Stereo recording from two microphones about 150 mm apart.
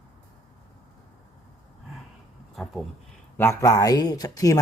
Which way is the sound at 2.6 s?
Centre (ahead or behind).